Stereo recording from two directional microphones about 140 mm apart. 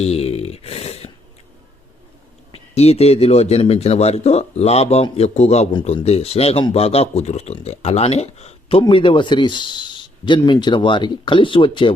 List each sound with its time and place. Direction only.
0.0 s a sound: 45° left (ahead or behind)
2.7 s speech: 50° left (ahead or behind)
8.8 s speech: 35° left (ahead or behind)